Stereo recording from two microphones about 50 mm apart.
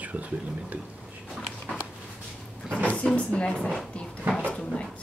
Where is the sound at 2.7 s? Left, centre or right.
Left.